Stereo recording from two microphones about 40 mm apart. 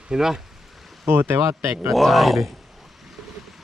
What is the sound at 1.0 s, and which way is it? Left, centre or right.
Speech, right.